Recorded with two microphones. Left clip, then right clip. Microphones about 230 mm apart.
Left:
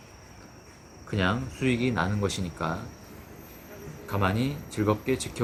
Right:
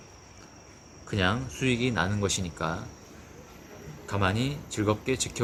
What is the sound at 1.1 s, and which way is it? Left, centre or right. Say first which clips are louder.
Speech: even; centre.